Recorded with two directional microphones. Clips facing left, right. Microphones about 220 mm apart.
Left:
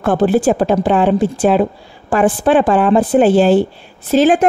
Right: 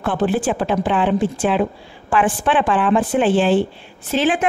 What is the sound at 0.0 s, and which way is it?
A woman's voice, 40° left (ahead or behind).